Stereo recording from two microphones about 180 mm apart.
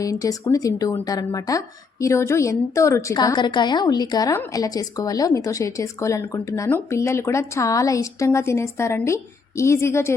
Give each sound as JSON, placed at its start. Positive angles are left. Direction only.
{"t": 0.0, "sound": "speech", "side_deg": 20}